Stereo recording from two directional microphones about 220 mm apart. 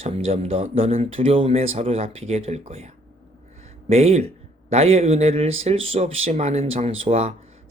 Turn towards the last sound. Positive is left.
turn(degrees=-30)  # may be behind; listen again after turning